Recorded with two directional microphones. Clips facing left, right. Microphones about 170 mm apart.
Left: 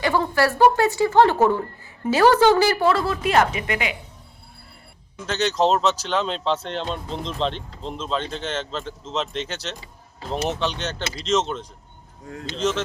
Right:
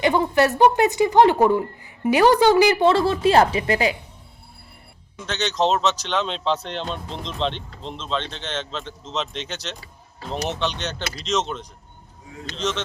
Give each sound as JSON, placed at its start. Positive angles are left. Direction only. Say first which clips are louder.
{"t": 0.0, "sound": "a woman's voice", "louder": "right 2 dB", "side_deg": -20}
{"t": 5.2, "sound": "speech", "louder": "left 2 dB", "side_deg": 5}